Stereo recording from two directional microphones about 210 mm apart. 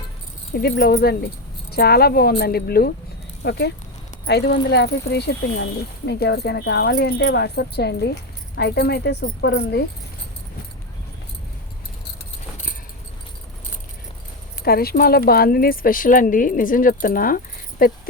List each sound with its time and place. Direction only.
0.5 s speech: 50° left (ahead or behind)
14.6 s speech: 45° left (ahead or behind)